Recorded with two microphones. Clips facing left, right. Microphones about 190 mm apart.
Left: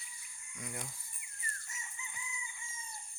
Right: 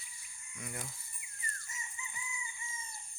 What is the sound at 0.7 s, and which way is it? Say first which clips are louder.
Speech: even; 5° right (ahead or behind).